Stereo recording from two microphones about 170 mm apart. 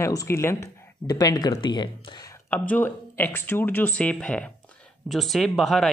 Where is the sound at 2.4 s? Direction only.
10° left (ahead or behind).